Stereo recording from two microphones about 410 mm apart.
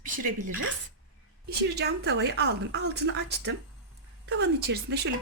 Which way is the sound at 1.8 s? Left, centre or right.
Right.